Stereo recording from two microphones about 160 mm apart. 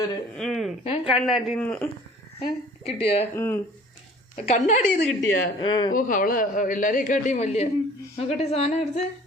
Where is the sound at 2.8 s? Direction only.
40° left (ahead or behind).